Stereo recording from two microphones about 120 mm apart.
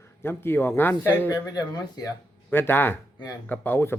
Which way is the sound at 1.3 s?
35° left (ahead or behind).